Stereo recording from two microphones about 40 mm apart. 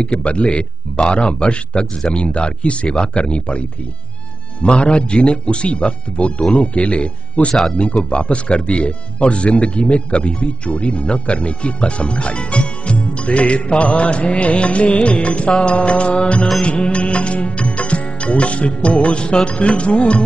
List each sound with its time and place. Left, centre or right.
0.0 s speech: left
16.6 s music: left